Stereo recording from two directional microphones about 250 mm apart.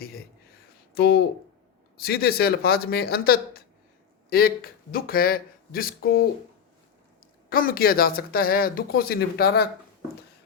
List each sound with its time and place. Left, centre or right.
0.0 s a sound: left
0.9 s speech: left
7.5 s speech: left